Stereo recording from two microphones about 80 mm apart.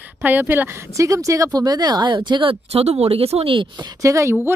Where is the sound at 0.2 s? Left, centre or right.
Right.